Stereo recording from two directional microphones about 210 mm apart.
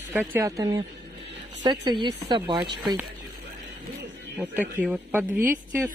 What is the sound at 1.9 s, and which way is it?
Speech, 20° right (ahead or behind).